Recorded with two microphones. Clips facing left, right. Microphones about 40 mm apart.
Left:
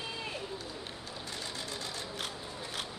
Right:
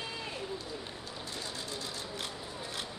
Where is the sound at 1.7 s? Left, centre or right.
Left.